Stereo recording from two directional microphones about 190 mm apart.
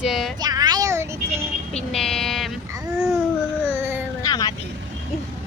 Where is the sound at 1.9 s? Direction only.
Centre (ahead or behind).